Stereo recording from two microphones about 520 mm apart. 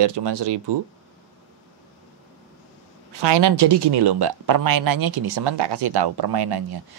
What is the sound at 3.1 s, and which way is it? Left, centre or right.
Speech, right.